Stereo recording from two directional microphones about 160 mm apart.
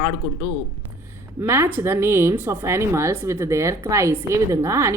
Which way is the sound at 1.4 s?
15° right (ahead or behind).